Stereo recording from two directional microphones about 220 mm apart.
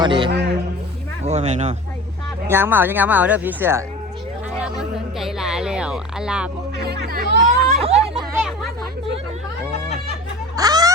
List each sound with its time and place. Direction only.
0.0 s a man's voice: 20° right (ahead or behind)
0.3 s music: 50° right (ahead or behind)
1.2 s speech: 30° right (ahead or behind)
2.5 s speech: 10° right (ahead or behind)
6.8 s speech: 45° right (ahead or behind)
7.8 s speech: 25° right (ahead or behind)
8.1 s a sound: 5° right (ahead or behind)
10.6 s a sound: 15° right (ahead or behind)